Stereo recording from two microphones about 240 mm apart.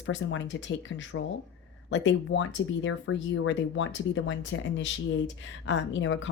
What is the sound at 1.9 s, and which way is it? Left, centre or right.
Speech, left.